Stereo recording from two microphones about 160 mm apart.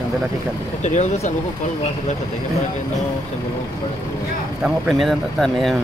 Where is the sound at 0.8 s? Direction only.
45° left (ahead or behind).